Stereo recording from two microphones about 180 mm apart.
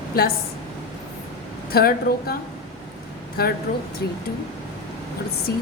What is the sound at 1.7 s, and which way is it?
Speech, 60° left (ahead or behind).